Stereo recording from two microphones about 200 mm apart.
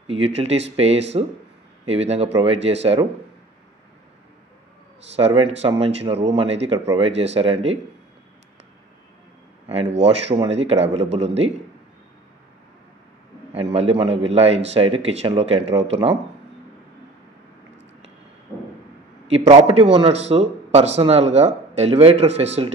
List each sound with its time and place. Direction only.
0.1 s a man's voice: 30° right (ahead or behind)
5.1 s a man's voice: 30° right (ahead or behind)
9.7 s a man's voice: 30° right (ahead or behind)
13.5 s a man's voice: 30° right (ahead or behind)
19.2 s a man's voice: 30° right (ahead or behind)